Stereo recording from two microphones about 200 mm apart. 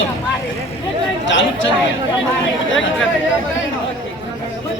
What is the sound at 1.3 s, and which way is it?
Speech, 65° left (ahead or behind).